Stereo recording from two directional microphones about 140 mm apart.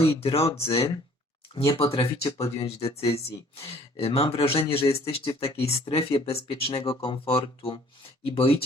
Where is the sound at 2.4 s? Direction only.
45° left (ahead or behind).